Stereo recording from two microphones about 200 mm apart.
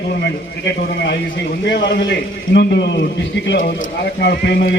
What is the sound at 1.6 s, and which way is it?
A man's voice, 60° left (ahead or behind).